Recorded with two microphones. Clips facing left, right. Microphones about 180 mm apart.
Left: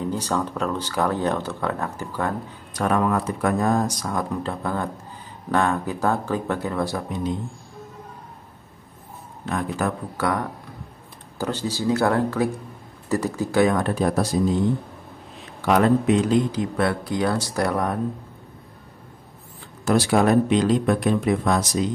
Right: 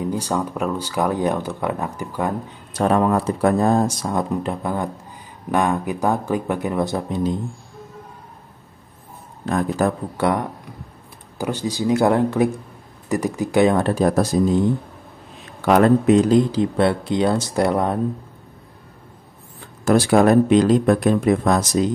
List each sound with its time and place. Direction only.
0.0 s speech: 10° right (ahead or behind)
2.7 s speech: 30° right (ahead or behind)
9.5 s speech: 35° right (ahead or behind)
13.9 s speech: 40° right (ahead or behind)
15.6 s speech: 45° right (ahead or behind); by 17.9 s 25° right (ahead or behind)
19.8 s speech: 50° right (ahead or behind)